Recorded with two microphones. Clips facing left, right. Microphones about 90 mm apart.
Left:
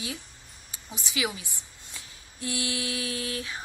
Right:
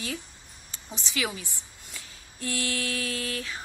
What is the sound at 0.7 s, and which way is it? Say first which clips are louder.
A woman's voice: right 1 dB; 15° left (ahead or behind).